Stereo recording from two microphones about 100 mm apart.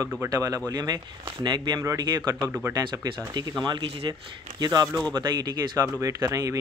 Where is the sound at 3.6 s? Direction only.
45° right (ahead or behind).